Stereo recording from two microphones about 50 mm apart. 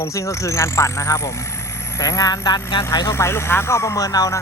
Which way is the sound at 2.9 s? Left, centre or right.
Left.